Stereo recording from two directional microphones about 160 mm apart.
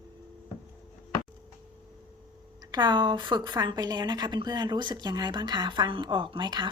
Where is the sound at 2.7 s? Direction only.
30° right (ahead or behind).